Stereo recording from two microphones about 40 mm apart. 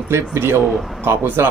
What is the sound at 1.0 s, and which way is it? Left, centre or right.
Speech, right.